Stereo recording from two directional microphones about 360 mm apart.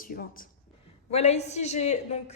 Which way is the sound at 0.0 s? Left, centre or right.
Left.